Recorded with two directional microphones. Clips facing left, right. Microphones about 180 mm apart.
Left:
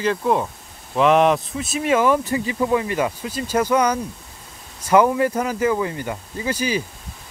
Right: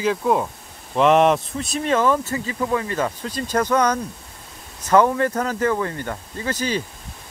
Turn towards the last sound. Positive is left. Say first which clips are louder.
# left 1 dB
turn(degrees=10)  # may be behind; listen again after turning